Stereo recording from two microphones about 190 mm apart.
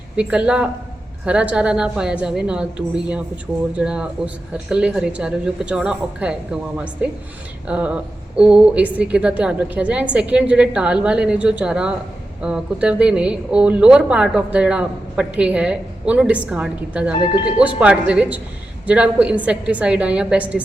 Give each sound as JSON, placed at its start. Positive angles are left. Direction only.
{"t": 0.2, "sound": "a woman's voice", "side_deg": -5}